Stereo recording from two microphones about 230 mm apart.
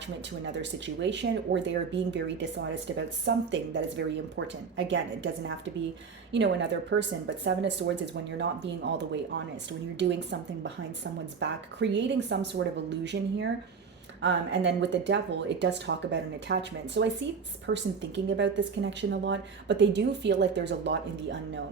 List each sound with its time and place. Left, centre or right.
0.4 s a woman's voice: right
6.3 s a woman's voice: right